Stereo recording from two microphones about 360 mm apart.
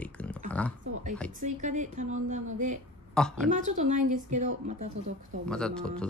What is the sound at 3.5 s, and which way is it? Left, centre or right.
Speech, centre.